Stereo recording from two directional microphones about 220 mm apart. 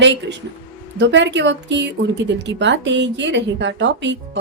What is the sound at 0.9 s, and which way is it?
Speech, 55° right (ahead or behind).